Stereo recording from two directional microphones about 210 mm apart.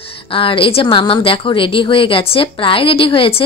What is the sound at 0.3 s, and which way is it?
Speech, 25° left (ahead or behind).